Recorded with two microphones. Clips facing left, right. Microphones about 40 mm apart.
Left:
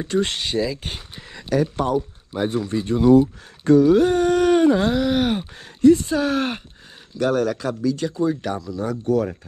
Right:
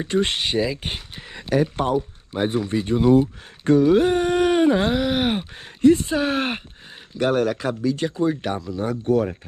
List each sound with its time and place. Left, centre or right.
0.0 s speech: right